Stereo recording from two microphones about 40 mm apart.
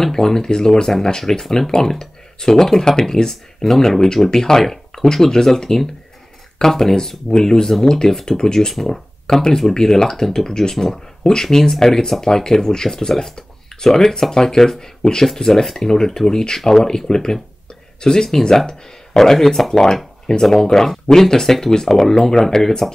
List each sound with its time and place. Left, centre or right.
0.0 s speech: centre